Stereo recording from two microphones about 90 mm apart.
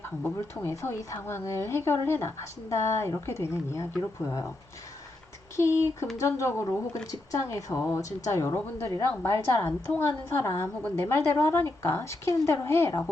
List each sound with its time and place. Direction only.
0.3 s speech: 30° left (ahead or behind)
5.5 s a woman's voice: 30° left (ahead or behind)